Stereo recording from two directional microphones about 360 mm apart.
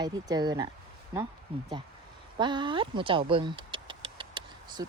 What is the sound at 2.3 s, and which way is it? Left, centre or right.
Speech, centre.